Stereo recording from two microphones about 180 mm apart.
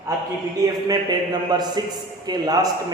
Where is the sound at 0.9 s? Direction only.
25° right (ahead or behind).